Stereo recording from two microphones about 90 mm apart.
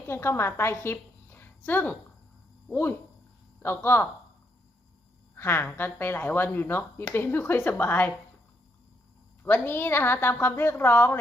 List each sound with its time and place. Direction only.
0.1 s a woman's voice: 30° left (ahead or behind)
3.6 s a woman's voice: 25° left (ahead or behind)
5.4 s a woman's voice: 25° left (ahead or behind)
9.4 s a woman's voice: 20° left (ahead or behind)